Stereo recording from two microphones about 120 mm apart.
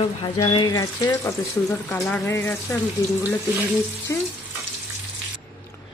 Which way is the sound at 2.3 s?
20° left (ahead or behind).